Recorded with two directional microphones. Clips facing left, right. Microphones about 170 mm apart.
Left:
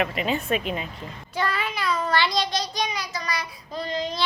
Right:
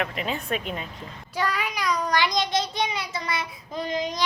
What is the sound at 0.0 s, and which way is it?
Speech, 5° left (ahead or behind).